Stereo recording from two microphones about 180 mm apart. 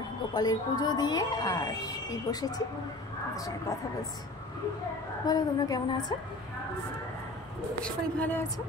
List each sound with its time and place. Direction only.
0.3 s a woman's voice: 25° left (ahead or behind)
5.2 s a woman's voice: 20° left (ahead or behind)
7.8 s speech: 10° left (ahead or behind)